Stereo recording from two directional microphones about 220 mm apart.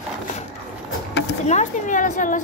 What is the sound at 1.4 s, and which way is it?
Speech, 35° left (ahead or behind).